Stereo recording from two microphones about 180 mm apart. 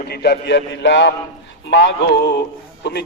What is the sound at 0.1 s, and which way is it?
A man's voice, 65° left (ahead or behind).